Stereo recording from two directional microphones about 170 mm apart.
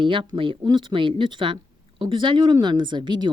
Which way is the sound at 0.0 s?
30° right (ahead or behind).